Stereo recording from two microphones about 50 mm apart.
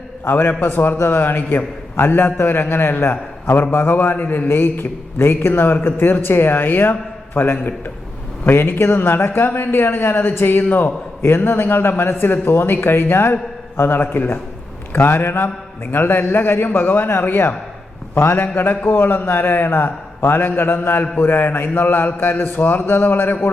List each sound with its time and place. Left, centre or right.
0.3 s a man's voice: left